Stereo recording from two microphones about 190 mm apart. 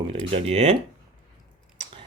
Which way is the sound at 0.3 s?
30° right (ahead or behind).